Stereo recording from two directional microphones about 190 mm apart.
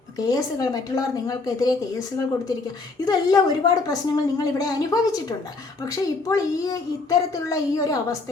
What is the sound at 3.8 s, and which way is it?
A child's voice, 20° left (ahead or behind).